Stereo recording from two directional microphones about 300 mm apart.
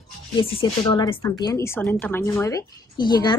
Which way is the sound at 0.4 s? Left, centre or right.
Centre.